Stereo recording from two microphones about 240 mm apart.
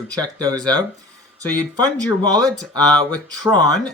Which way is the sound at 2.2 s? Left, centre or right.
Centre.